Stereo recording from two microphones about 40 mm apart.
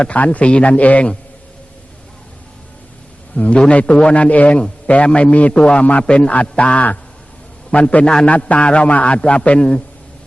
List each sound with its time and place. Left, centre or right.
0.0 s a man's voice: left
3.3 s a man's voice: left
3.7 s a man's voice: left
8.0 s a man's voice: left
8.3 s a man's voice: left